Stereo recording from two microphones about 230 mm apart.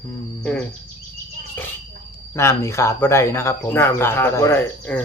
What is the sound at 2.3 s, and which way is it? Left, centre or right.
Speech, centre.